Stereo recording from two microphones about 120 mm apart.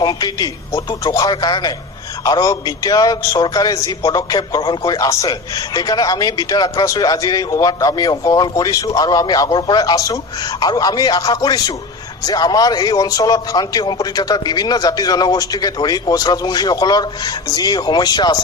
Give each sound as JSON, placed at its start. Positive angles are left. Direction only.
{"t": 0.0, "sound": "a man's voice", "side_deg": 35}